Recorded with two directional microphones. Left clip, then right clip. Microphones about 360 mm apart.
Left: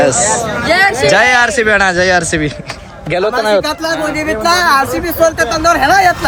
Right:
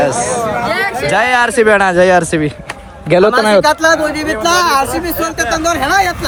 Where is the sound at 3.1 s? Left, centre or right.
Centre.